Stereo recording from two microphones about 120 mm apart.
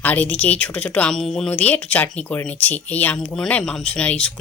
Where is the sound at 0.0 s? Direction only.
15° left (ahead or behind).